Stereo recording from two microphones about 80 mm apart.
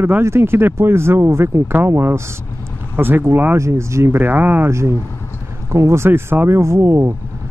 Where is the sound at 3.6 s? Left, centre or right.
Right.